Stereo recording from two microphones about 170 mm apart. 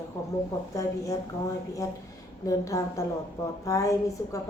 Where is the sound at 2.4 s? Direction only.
20° left (ahead or behind).